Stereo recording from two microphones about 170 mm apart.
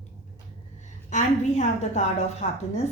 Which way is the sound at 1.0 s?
45° left (ahead or behind).